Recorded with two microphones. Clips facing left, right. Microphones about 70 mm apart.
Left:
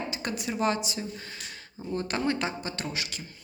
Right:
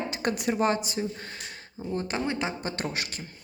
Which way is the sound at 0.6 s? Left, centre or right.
Right.